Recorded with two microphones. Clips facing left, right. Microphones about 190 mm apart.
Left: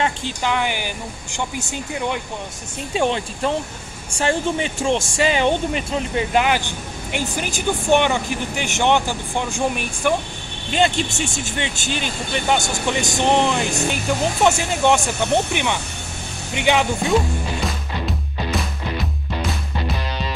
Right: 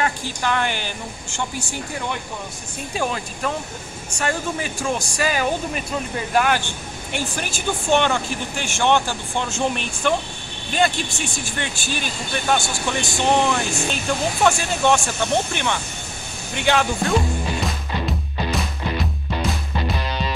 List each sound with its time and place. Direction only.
0.0 s speech: 20° left (ahead or behind)
10.7 s speech: 25° left (ahead or behind)